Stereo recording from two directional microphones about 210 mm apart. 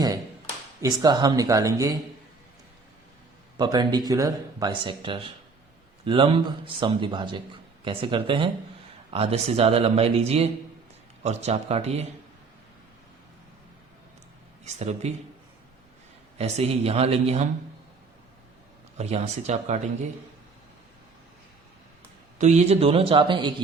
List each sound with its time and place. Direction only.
0.8 s speech: 15° right (ahead or behind)
3.6 s speech: 20° right (ahead or behind)
14.6 s speech: 30° right (ahead or behind)
16.4 s speech: 30° right (ahead or behind)
18.9 s speech: 30° right (ahead or behind)
22.4 s speech: 35° right (ahead or behind)